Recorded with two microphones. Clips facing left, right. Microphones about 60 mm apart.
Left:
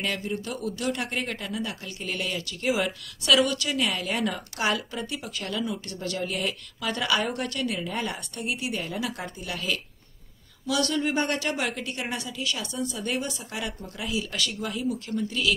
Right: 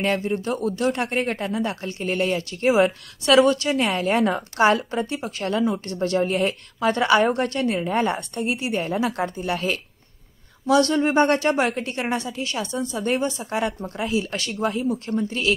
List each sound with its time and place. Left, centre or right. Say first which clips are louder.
0.0 s a woman's voice: right 7 dB; right